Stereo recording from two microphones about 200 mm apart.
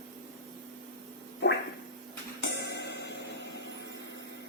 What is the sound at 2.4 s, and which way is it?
Music, 60° left (ahead or behind).